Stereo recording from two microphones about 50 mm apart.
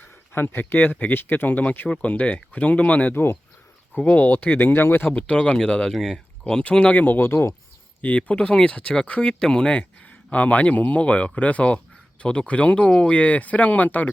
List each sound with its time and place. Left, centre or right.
0.0 s speech: left
4.5 s speech: left
5.1 s speech: left
5.9 s speech: centre
6.5 s speech: left
7.0 s speech: left
8.0 s speech: left